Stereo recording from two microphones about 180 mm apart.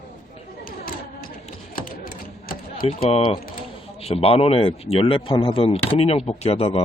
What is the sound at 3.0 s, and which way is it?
Speech, 30° left (ahead or behind).